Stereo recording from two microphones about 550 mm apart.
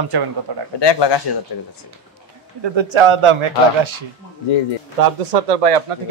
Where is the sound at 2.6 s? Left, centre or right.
Right.